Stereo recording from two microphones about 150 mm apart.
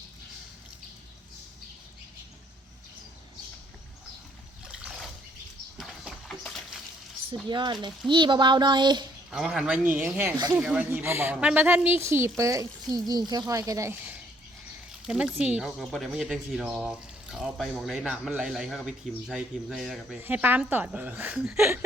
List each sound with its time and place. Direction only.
5.7 s a sound: centre (ahead or behind)
7.4 s speech: 30° right (ahead or behind)
9.3 s a woman's voice: 5° right (ahead or behind)
10.3 s speech: 25° right (ahead or behind)
10.6 s a woman's voice: 5° right (ahead or behind)
15.0 s speech: 5° right (ahead or behind)
20.2 s a woman's voice: 10° right (ahead or behind)